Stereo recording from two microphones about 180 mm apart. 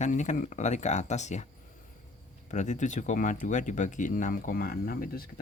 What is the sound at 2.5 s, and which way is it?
Speech, 40° left (ahead or behind).